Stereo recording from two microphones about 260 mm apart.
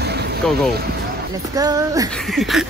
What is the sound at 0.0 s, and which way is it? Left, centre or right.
Vehicle, right.